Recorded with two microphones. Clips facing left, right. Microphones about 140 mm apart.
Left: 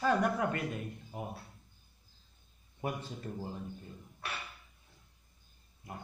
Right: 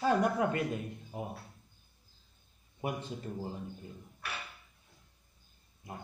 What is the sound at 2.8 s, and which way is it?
Speech, 20° right (ahead or behind).